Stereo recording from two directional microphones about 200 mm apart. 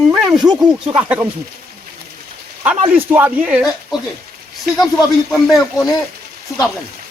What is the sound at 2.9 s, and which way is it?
Speech, 10° right (ahead or behind).